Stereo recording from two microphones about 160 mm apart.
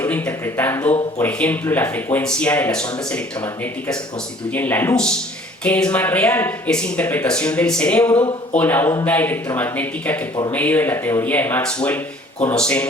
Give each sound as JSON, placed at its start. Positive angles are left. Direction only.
{"t": 0.0, "sound": "speech", "side_deg": 10}